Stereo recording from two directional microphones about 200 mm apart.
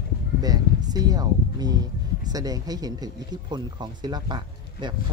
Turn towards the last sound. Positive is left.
turn(degrees=-20)  # may be behind; listen again after turning